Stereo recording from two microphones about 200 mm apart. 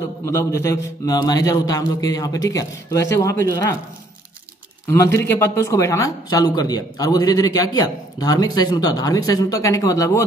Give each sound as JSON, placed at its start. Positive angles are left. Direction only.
{"t": 0.2, "sound": "speech", "side_deg": 15}
{"t": 4.8, "sound": "speech", "side_deg": 15}